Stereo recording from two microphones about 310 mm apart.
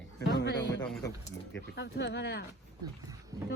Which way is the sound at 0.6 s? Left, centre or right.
Centre.